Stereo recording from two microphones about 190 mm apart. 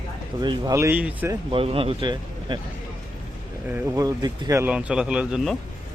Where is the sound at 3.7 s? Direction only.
15° right (ahead or behind).